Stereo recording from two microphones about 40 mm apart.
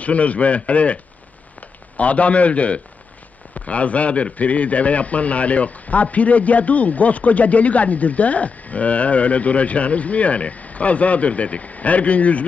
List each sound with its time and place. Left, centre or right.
0.0 s a man's voice: left
2.0 s a man's voice: left